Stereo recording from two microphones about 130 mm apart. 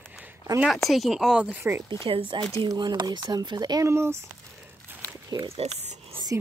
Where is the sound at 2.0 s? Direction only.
40° right (ahead or behind).